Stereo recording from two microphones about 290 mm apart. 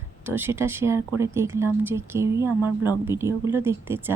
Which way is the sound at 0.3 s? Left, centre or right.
Centre.